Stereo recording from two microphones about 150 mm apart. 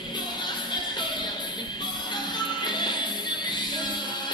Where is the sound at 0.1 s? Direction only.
30° left (ahead or behind).